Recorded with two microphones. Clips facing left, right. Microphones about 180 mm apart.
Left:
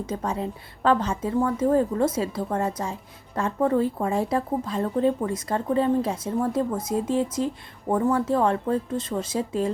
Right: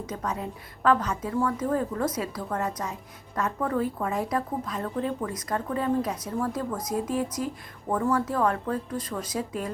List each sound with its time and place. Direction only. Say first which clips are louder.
0.0 s a woman's voice: left 4 dB; 30° left (ahead or behind)